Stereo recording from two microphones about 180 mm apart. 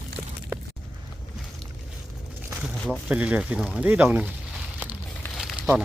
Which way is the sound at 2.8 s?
5° left (ahead or behind).